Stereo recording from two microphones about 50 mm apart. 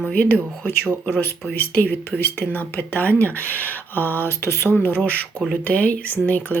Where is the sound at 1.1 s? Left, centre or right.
Left.